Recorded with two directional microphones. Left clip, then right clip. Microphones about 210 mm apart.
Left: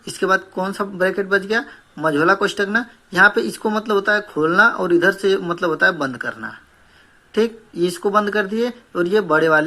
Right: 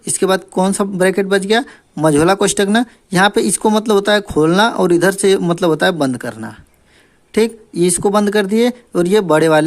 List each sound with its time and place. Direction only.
0.1 s speech: 45° right (ahead or behind)